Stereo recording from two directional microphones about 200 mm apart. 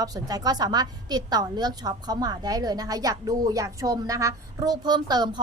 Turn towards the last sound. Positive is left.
turn(degrees=-20)  # may be behind; listen again after turning